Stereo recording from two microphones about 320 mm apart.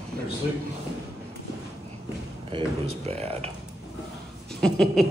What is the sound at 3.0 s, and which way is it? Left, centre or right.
Speech, centre.